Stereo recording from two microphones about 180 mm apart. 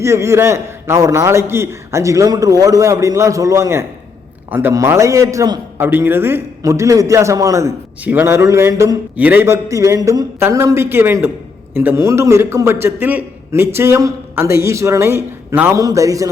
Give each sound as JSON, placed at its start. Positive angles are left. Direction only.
{"t": 0.0, "sound": "a man's voice", "side_deg": -15}